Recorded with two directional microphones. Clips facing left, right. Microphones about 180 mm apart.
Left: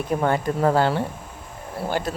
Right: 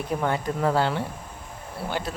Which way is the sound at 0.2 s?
45° left (ahead or behind).